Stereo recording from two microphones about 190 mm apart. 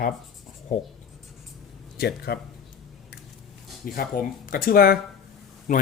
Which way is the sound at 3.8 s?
50° left (ahead or behind).